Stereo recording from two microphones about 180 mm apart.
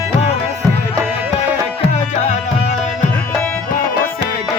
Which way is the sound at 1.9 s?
40° left (ahead or behind).